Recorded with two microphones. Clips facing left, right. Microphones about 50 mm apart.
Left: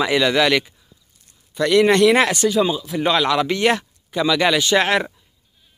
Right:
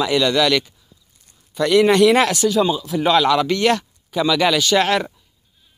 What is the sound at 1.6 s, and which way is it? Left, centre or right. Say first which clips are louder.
A man's voice: right 1 dB; centre.